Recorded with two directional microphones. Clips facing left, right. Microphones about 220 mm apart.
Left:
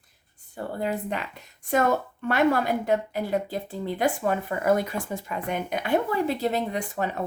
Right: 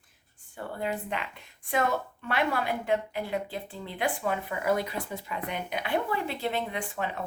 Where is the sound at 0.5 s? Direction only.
40° left (ahead or behind).